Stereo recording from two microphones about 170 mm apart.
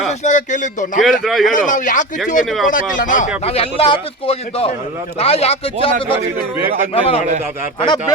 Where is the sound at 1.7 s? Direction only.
50° left (ahead or behind).